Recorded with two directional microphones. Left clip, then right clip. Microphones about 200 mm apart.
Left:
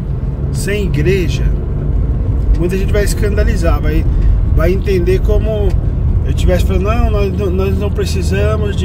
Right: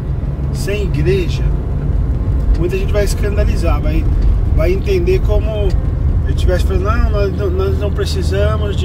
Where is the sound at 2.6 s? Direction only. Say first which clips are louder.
Left 1 dB; 30° left (ahead or behind).